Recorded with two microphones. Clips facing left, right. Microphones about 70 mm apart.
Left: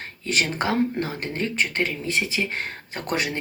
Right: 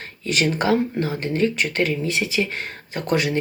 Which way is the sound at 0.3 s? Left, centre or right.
Left.